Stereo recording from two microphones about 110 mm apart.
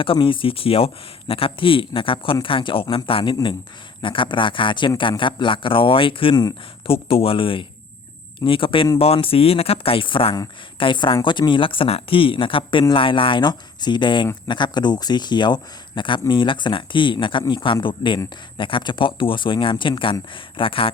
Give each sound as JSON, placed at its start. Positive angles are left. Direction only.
{"t": 0.0, "sound": "speech", "side_deg": 50}